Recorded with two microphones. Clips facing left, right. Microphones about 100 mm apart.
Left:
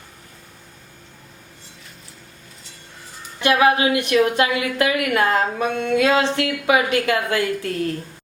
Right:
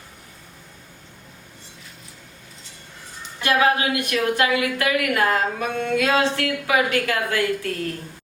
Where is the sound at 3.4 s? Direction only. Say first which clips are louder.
Left 3 dB; 20° left (ahead or behind).